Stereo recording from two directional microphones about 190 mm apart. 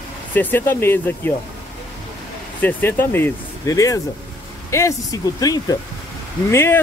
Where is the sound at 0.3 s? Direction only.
10° left (ahead or behind).